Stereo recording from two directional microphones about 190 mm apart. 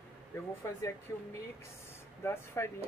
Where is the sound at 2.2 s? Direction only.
15° left (ahead or behind).